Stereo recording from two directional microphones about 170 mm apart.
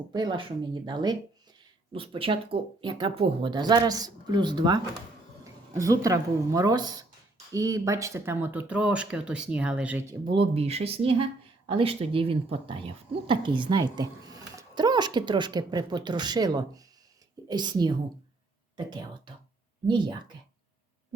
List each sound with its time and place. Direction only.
0.1 s speech: 25° right (ahead or behind); by 10.0 s 5° right (ahead or behind)
10.1 s speech: 30° right (ahead or behind)